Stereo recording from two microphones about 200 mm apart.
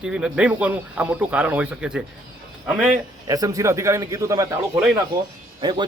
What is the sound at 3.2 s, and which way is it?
A man's voice, 15° right (ahead or behind).